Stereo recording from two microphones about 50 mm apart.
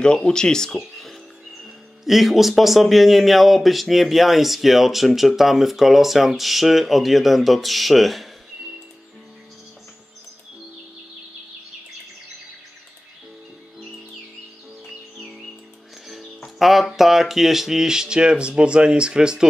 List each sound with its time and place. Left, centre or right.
0.0 s speech: centre
0.7 s a sound: centre
1.6 s speech: centre
16.1 s speech: centre